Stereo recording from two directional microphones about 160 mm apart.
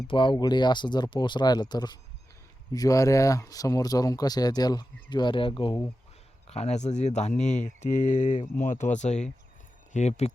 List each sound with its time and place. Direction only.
0.1 s speech: 30° left (ahead or behind)
6.5 s speech: 45° left (ahead or behind)